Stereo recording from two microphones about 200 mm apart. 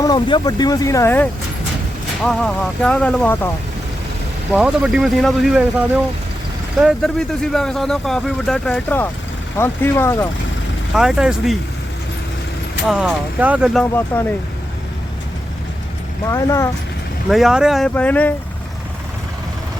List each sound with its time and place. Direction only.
0.0 s speech: 20° left (ahead or behind)
4.5 s speech: 5° right (ahead or behind)
6.7 s speech: centre (ahead or behind)
10.9 s speech: centre (ahead or behind)
12.9 s speech: 5° right (ahead or behind)
13.9 s speech: 10° left (ahead or behind)
16.3 s speech: 15° left (ahead or behind)
17.2 s speech: centre (ahead or behind)